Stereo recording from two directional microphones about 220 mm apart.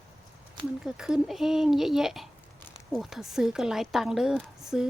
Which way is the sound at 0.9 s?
5° right (ahead or behind).